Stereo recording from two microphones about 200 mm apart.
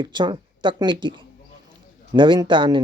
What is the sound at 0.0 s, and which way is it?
Speech, 25° right (ahead or behind).